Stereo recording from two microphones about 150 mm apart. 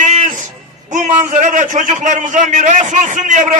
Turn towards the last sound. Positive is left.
turn(degrees=-55)  # may be behind; listen again after turning